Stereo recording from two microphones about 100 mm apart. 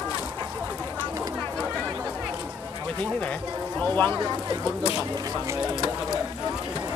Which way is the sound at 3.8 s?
15° left (ahead or behind).